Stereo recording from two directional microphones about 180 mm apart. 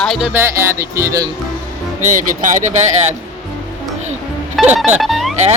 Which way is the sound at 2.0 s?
45° right (ahead or behind).